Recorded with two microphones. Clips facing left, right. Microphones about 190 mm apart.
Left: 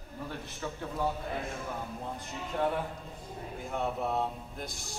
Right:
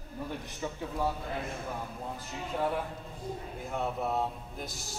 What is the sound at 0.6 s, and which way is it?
Speech, 15° right (ahead or behind).